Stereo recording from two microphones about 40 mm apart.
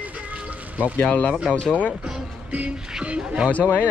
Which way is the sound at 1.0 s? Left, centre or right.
Left.